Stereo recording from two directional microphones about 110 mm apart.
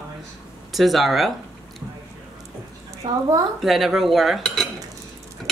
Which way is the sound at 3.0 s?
40° right (ahead or behind).